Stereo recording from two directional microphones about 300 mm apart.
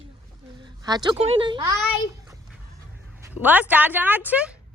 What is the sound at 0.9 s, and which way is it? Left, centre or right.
Speech, centre.